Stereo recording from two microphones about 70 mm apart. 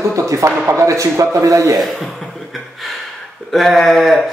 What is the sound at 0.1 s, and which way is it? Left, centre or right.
A man's voice, right.